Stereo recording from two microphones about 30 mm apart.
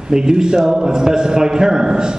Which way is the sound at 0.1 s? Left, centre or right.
Right.